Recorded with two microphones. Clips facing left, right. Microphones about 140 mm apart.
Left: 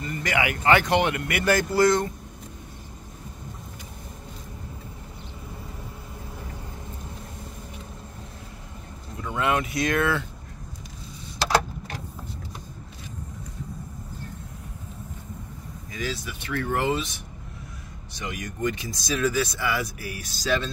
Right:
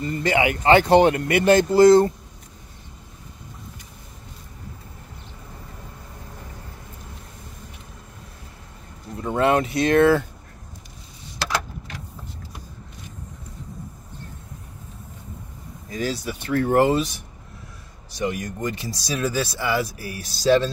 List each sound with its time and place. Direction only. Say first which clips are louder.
0.0 s speech: right 5 dB; 30° right (ahead or behind)
9.2 s speech: right 6 dB; 35° right (ahead or behind)
15.9 s speech: right 6 dB; 35° right (ahead or behind)
18.1 s speech: right 8 dB; 35° right (ahead or behind)